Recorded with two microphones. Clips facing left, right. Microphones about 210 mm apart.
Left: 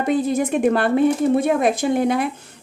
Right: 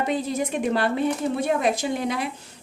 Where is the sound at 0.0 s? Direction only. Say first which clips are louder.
Left 6 dB; 50° left (ahead or behind).